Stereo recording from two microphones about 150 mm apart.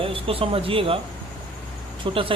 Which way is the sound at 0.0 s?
40° right (ahead or behind).